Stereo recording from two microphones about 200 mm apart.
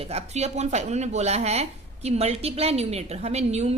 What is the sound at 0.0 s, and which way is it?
A woman's voice, 30° right (ahead or behind).